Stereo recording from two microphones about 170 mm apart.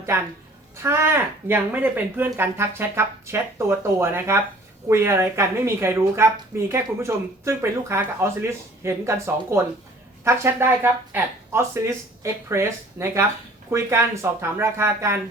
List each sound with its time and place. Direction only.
0.8 s speech: 15° right (ahead or behind)